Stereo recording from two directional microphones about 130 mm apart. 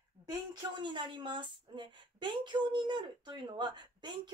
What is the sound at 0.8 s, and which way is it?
A woman's voice, 35° right (ahead or behind).